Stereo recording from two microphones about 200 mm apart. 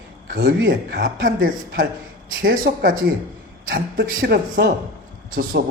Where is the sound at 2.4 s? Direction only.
45° right (ahead or behind).